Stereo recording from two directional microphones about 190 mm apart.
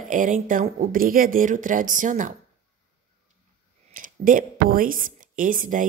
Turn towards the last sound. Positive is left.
turn(degrees=-45)  # may be behind; listen again after turning